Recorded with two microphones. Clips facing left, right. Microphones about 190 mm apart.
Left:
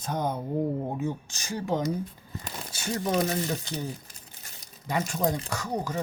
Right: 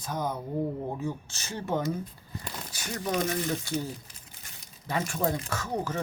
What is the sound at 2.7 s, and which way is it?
Speech, 25° left (ahead or behind).